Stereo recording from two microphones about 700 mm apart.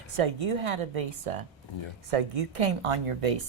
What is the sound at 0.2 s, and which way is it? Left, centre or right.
Speech, right.